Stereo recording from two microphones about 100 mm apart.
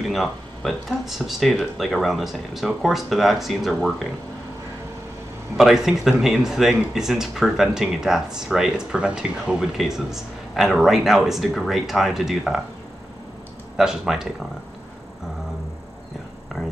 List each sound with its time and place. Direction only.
0.1 s speech: centre (ahead or behind)
5.6 s speech: 5° right (ahead or behind)
13.7 s speech: 5° right (ahead or behind)